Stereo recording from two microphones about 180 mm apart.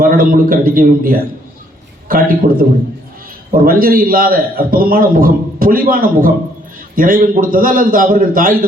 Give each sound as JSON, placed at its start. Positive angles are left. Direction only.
{"t": 0.0, "sound": "a man's voice", "side_deg": -50}